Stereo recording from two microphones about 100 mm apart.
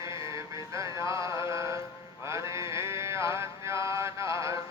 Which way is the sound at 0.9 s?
30° right (ahead or behind).